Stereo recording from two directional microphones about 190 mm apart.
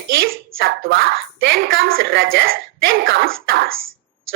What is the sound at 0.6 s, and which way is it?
Speech, 90° right.